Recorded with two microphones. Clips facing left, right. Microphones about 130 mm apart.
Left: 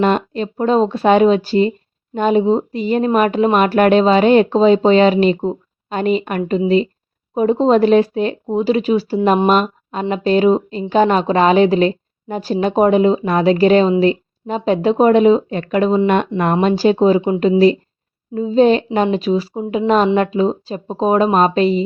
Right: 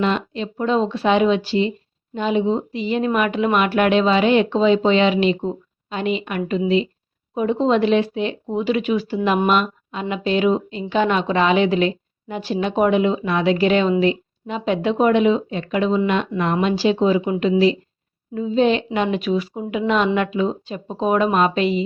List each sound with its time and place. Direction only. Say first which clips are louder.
0.0 s speech: left 5 dB; 45° left (ahead or behind)
17.2 s speech: left 4 dB; 25° left (ahead or behind)
18.3 s speech: left 5 dB; 35° left (ahead or behind)